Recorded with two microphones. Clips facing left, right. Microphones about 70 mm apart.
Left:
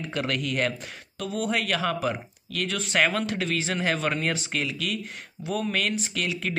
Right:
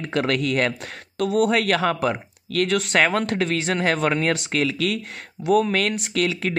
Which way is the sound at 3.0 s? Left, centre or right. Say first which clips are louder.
Right 5 dB; right.